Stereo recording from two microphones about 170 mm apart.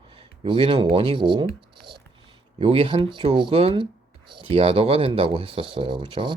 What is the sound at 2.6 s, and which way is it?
Speech, 30° right (ahead or behind).